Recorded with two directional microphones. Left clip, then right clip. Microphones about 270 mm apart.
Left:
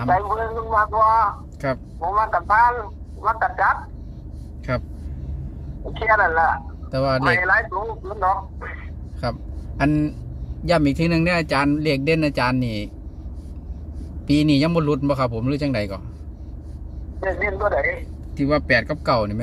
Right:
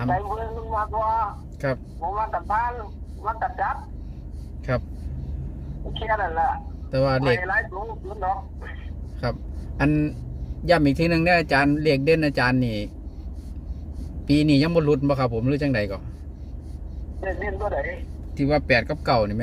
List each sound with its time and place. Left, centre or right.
0.1 s speech: left
5.9 s speech: centre
6.9 s speech: centre
7.4 s speech: centre
9.7 s speech: centre
14.3 s speech: centre
17.2 s speech: left
18.3 s speech: centre